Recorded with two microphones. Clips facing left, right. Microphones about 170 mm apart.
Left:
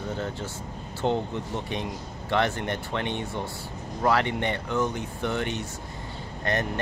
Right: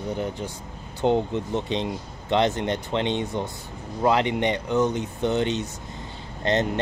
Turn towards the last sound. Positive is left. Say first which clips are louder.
# right 5 dB
turn(degrees=-20)  # may be behind; listen again after turning